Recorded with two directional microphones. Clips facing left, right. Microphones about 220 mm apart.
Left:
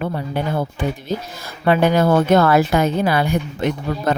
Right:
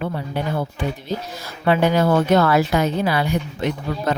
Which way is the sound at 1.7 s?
50° left (ahead or behind).